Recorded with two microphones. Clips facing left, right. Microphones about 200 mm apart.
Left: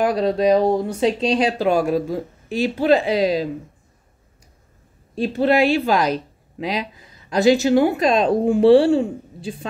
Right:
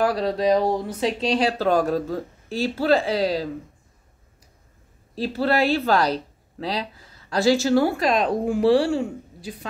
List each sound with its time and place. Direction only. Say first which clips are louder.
0.0 s speech: left 3 dB; 20° left (ahead or behind)
5.1 s speech: left 5 dB; 25° left (ahead or behind)